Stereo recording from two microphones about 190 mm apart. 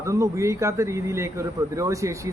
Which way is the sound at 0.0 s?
15° right (ahead or behind).